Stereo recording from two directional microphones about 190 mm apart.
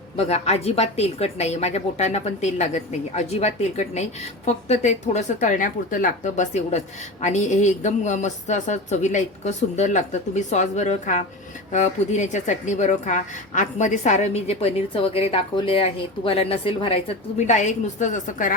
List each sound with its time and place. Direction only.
0.2 s a woman's voice: 35° left (ahead or behind)